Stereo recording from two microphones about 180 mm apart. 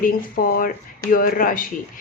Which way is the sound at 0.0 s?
50° left (ahead or behind).